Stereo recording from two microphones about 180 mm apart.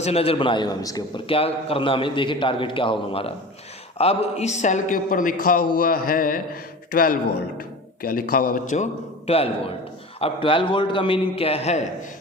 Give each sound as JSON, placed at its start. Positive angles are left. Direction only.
{"t": 0.0, "sound": "a man's voice", "side_deg": 35}